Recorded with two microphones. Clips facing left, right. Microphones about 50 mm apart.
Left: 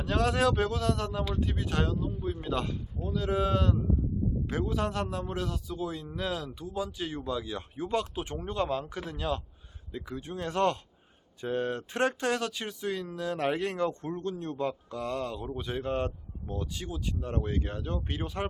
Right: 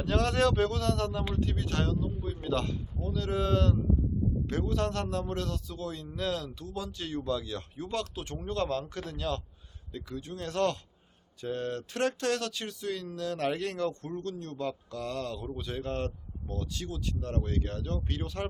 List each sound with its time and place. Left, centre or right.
0.0 s a man's voice: centre